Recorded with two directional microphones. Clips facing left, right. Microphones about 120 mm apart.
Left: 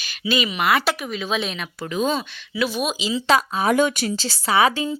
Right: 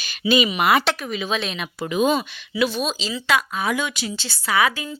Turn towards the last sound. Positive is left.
turn(degrees=30)  # may be behind; listen again after turning